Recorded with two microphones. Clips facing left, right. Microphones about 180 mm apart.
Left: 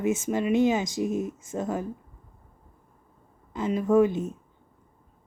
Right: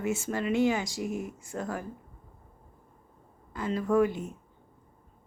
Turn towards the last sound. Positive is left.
turn(degrees=20)  # may be behind; listen again after turning